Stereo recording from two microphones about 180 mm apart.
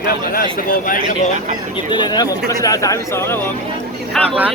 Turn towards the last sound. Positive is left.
turn(degrees=5)  # may be behind; listen again after turning